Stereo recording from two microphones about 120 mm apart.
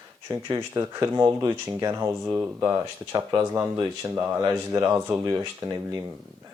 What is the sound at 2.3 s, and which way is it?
Speech, 15° right (ahead or behind).